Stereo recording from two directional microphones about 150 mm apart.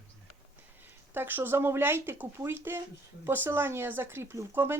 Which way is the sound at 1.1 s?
15° right (ahead or behind).